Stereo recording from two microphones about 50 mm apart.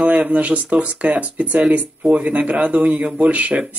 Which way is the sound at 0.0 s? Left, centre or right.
Right.